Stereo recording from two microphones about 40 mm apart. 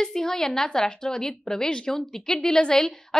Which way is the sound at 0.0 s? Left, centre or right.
Centre.